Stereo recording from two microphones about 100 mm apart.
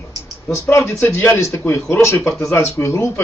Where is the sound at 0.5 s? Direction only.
30° left (ahead or behind).